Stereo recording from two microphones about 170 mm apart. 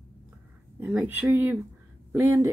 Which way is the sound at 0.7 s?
10° right (ahead or behind).